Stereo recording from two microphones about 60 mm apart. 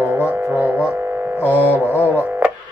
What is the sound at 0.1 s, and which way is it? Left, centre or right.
Music, right.